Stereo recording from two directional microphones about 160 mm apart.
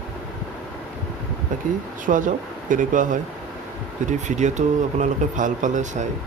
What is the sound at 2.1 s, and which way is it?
Speech, 55° right (ahead or behind).